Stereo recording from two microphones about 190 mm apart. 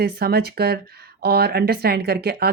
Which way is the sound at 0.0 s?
55° right (ahead or behind).